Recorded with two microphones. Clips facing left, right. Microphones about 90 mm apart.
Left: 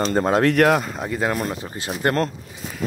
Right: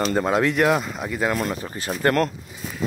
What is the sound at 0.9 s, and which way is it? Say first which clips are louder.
Speech: left 1 dB; 35° left (ahead or behind).